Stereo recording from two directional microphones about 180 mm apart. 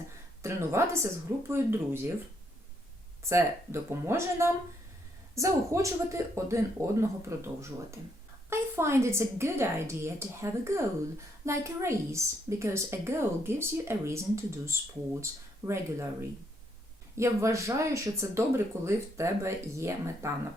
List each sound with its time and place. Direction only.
0.4 s a woman's voice: 15° right (ahead or behind)
3.2 s a woman's voice: 15° right (ahead or behind)
17.2 s a woman's voice: 15° right (ahead or behind)